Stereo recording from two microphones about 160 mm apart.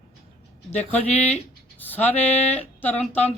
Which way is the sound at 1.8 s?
10° left (ahead or behind).